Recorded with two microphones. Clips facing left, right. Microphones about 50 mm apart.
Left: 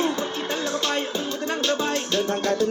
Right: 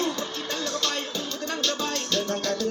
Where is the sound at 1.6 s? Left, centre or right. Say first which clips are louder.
Left 5 dB; centre.